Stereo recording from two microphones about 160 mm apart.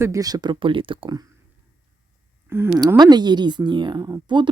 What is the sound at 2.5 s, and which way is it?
A woman's voice, 15° right (ahead or behind).